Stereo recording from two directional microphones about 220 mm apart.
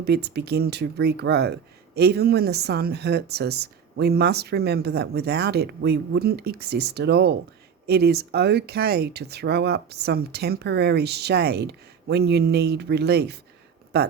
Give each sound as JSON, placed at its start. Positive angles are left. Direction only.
{"t": 0.0, "sound": "speech", "side_deg": -50}